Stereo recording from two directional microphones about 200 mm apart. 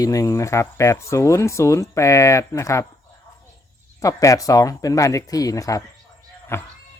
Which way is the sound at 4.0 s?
15° left (ahead or behind).